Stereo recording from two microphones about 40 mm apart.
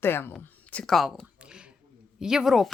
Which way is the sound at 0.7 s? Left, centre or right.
Left.